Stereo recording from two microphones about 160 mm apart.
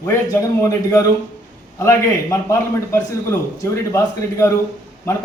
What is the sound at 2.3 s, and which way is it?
A man's voice, 15° left (ahead or behind).